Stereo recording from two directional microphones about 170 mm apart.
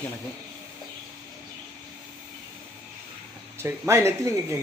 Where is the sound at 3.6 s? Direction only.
15° right (ahead or behind).